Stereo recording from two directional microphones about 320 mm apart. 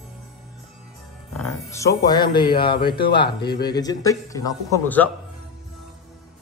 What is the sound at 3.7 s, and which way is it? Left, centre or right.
Speech, centre.